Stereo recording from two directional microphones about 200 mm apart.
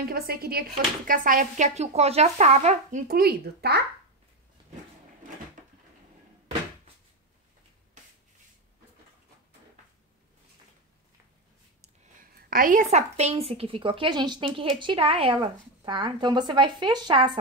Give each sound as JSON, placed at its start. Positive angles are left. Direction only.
{"t": 0.0, "sound": "speech", "side_deg": -50}
{"t": 11.8, "sound": "a sound", "side_deg": -45}
{"t": 12.9, "sound": "a woman's voice", "side_deg": -35}